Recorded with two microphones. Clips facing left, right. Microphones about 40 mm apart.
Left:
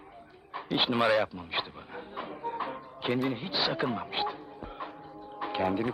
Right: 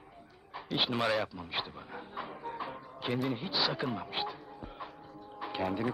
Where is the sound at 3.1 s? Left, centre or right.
Centre.